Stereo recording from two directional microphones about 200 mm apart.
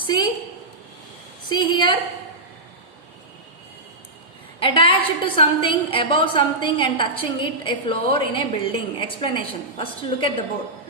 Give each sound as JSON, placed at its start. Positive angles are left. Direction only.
{"t": 0.0, "sound": "a woman's voice", "side_deg": 25}
{"t": 1.5, "sound": "a woman's voice", "side_deg": 20}
{"t": 4.6, "sound": "a woman's voice", "side_deg": 25}